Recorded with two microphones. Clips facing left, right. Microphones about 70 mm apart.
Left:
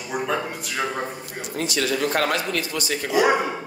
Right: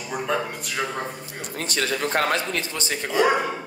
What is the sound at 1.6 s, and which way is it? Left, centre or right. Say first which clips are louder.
Speech: left 2 dB; right.